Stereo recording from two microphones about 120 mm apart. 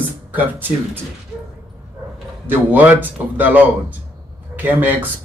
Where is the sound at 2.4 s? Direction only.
15° right (ahead or behind).